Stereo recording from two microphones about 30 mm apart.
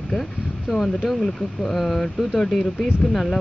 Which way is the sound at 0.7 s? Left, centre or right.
Centre.